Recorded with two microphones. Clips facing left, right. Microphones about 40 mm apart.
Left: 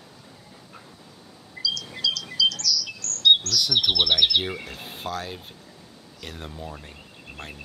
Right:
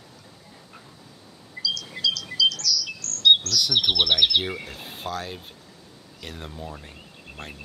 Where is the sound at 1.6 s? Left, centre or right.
Centre.